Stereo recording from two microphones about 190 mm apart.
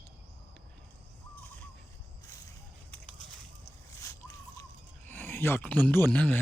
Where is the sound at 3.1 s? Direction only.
Centre (ahead or behind).